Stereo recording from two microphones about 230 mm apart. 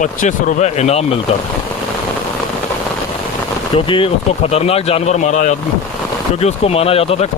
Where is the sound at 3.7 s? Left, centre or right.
Left.